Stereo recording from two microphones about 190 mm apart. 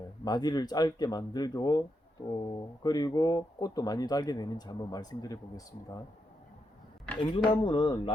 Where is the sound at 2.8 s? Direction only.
20° left (ahead or behind).